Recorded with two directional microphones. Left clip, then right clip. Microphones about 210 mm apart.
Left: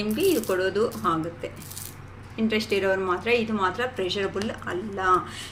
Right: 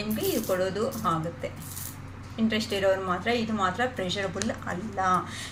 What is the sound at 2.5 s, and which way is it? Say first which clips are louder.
A woman's voice: left 1 dB; 50° left (ahead or behind).